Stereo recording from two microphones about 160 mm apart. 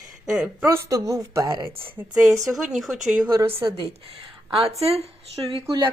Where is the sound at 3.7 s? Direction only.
35° right (ahead or behind).